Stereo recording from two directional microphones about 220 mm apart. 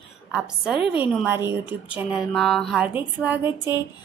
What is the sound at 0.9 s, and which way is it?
Speech, 10° right (ahead or behind).